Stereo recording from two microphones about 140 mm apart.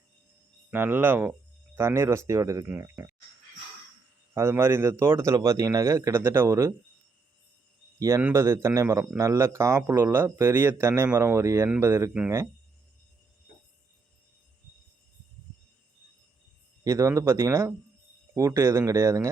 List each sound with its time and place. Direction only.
0.7 s speech: 15° right (ahead or behind)
4.4 s speech: 20° right (ahead or behind)
7.9 s speech: 20° right (ahead or behind)
16.8 s speech: 20° right (ahead or behind)